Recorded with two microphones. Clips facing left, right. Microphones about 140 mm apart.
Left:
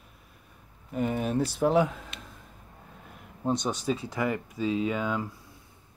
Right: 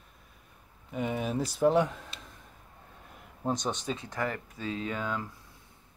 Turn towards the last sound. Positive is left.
turn(degrees=10)  # may be behind; listen again after turning